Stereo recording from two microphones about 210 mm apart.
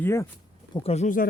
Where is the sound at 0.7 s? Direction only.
30° left (ahead or behind).